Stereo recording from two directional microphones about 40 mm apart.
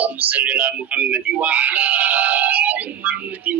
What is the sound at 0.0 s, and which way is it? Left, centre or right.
Speech, right.